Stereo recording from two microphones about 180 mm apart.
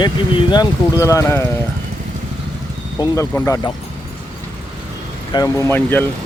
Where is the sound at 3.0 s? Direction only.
15° left (ahead or behind).